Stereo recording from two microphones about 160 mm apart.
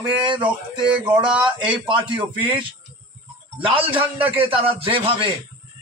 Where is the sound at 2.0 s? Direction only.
30° right (ahead or behind).